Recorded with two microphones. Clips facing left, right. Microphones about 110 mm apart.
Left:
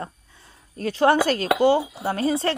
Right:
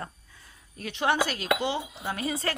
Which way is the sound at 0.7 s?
40° left (ahead or behind).